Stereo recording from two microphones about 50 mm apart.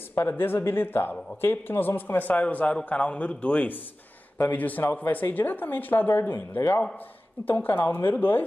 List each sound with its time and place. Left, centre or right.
0.1 s a man's voice: left